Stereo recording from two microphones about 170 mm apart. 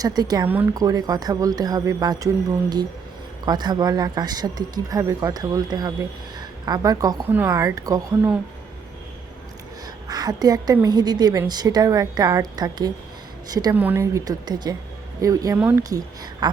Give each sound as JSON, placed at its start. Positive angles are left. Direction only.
{"t": 0.0, "sound": "speech", "side_deg": -25}
{"t": 0.4, "sound": "speech", "side_deg": -10}
{"t": 8.1, "sound": "speech", "side_deg": -10}
{"t": 9.8, "sound": "a woman's voice", "side_deg": -25}
{"t": 13.7, "sound": "speech", "side_deg": -10}
{"t": 15.5, "sound": "speech", "side_deg": -10}
{"t": 15.8, "sound": "speech", "side_deg": -20}